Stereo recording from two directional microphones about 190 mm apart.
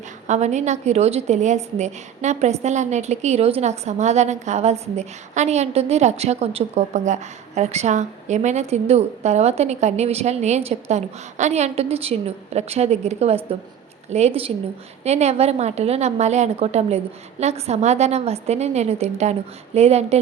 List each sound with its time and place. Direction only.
0.3 s a woman's voice: 35° right (ahead or behind)